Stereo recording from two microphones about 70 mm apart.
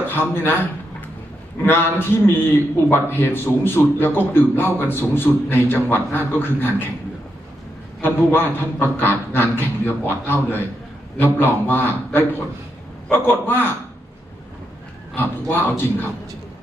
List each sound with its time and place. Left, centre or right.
0.1 s a man's voice: left
1.6 s a man's voice: left
8.0 s a man's voice: left
15.1 s a man's voice: left